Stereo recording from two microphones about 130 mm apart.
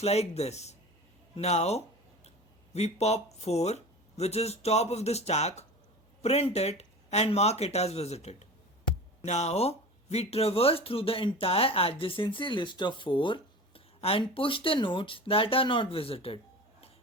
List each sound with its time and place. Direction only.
0.0 s speech: 55° left (ahead or behind)